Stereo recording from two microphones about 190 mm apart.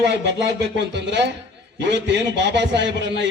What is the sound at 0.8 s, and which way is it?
A man's voice, 65° right (ahead or behind).